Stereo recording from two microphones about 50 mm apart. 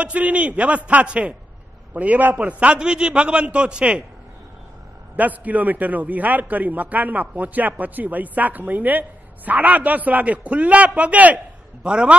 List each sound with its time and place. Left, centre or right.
0.0 s a man's voice: right
2.8 s a man's voice: centre
5.1 s a man's voice: right
11.8 s a man's voice: centre